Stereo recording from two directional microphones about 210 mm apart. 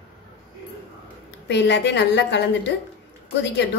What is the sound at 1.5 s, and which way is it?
A woman's voice, 55° left (ahead or behind).